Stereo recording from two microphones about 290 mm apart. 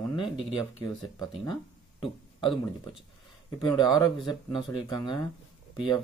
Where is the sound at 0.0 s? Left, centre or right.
Centre.